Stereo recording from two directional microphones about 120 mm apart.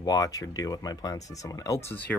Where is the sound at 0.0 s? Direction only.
30° left (ahead or behind).